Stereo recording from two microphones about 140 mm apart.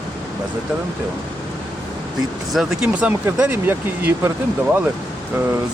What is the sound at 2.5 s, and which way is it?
Speech, 5° right (ahead or behind).